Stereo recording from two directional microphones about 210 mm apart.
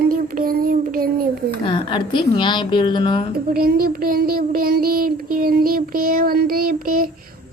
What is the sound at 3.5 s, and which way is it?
Child singing, 45° right (ahead or behind).